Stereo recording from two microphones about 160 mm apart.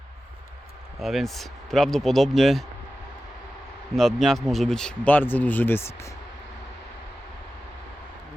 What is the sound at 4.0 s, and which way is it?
Speech, centre (ahead or behind).